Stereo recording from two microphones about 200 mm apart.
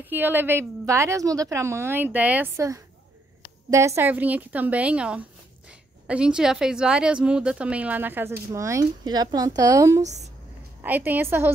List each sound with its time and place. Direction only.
0.0 s a woman's voice: 10° right (ahead or behind)
10.0 s a woman's voice: 35° right (ahead or behind)
10.8 s a woman's voice: 10° right (ahead or behind)